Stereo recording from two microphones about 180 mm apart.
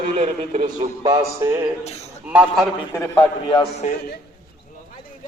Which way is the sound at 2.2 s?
5° right (ahead or behind).